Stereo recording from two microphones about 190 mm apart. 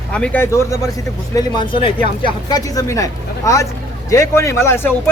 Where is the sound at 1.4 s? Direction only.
25° left (ahead or behind).